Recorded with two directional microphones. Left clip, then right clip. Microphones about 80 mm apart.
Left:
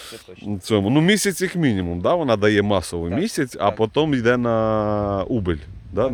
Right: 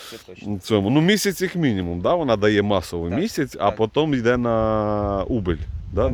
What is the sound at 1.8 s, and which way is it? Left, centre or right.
Speech, left.